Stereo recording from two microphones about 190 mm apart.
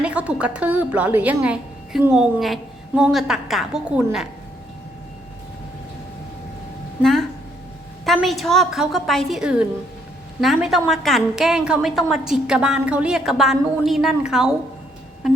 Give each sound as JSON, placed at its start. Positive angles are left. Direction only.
{"t": 0.0, "sound": "a woman's voice", "side_deg": -5}
{"t": 7.0, "sound": "a woman's voice", "side_deg": 0}